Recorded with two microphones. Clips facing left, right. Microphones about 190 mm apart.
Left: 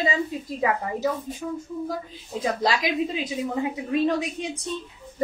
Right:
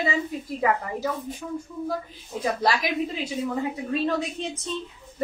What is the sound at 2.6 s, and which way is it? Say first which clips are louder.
A woman's voice: left 1 dB; 20° left (ahead or behind).